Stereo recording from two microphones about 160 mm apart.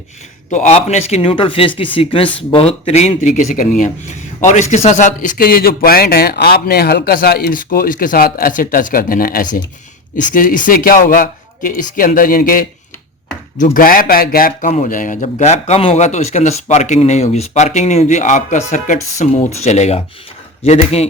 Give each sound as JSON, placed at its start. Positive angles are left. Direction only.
{"t": 0.5, "sound": "speech", "side_deg": 45}
{"t": 14.7, "sound": "speech", "side_deg": 50}
{"t": 15.4, "sound": "speech", "side_deg": 45}